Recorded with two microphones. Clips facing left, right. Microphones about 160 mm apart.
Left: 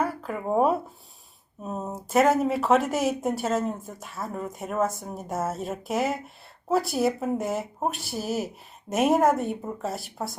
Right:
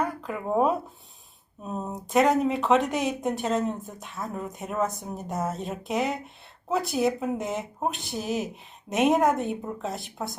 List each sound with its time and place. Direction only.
0.0 s speech: 5° left (ahead or behind)